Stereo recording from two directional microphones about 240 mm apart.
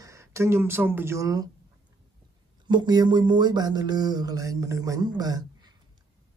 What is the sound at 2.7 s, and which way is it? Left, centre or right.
Speech, centre.